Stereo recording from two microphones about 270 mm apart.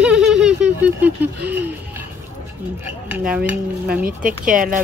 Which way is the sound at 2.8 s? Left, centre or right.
Centre.